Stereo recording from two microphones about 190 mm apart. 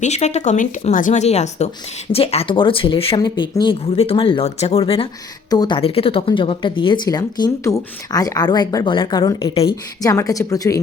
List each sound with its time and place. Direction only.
0.0 s speech: 35° left (ahead or behind); by 10.8 s 20° left (ahead or behind)